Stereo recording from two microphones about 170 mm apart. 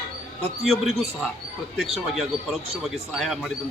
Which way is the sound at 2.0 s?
Centre (ahead or behind).